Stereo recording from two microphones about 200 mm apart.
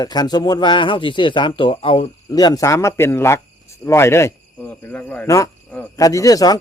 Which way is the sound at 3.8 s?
15° left (ahead or behind).